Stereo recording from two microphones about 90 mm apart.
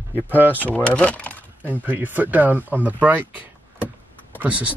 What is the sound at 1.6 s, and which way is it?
Speech, 20° right (ahead or behind).